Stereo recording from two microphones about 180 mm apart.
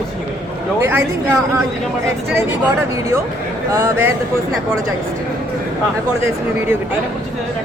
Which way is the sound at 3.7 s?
15° right (ahead or behind).